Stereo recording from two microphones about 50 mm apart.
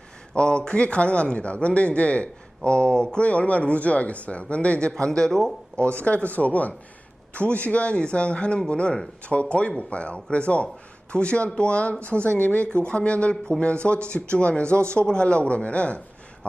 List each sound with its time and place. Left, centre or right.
0.3 s speech: centre
4.9 s speech: centre
5.7 s speech: left